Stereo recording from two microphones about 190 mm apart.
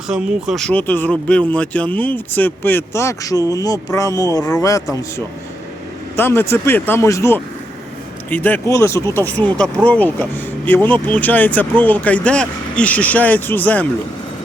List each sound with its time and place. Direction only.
0.1 s speech: 5° right (ahead or behind)